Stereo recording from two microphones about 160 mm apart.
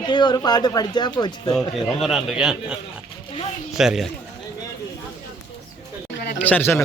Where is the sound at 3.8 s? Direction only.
Centre (ahead or behind).